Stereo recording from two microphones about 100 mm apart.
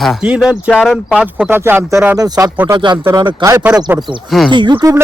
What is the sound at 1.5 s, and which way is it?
Speech, 20° right (ahead or behind).